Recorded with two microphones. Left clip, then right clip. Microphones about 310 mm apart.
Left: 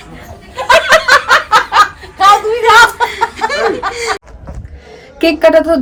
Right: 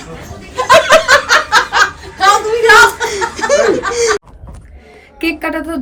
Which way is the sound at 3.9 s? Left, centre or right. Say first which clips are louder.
Right 4 dB; centre.